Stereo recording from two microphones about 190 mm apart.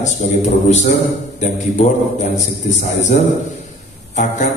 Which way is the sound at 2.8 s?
35° left (ahead or behind).